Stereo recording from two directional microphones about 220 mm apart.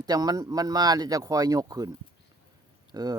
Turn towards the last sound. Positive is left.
turn(degrees=-15)  # may be behind; listen again after turning